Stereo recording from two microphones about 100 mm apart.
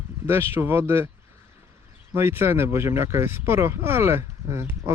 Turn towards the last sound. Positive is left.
turn(degrees=-25)  # may be behind; listen again after turning